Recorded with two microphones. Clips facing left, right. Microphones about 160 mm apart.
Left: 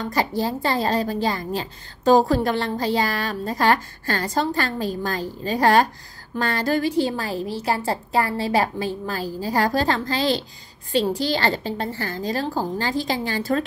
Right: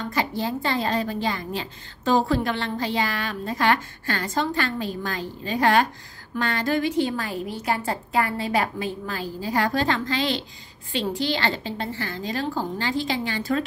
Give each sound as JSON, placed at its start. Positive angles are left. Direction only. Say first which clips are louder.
{"t": 0.0, "sound": "a woman's voice", "louder": "left 3 dB", "side_deg": 40}